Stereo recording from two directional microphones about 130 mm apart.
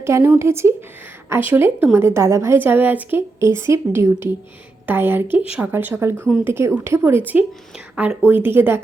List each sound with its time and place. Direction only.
0.0 s a woman's voice: 20° right (ahead or behind)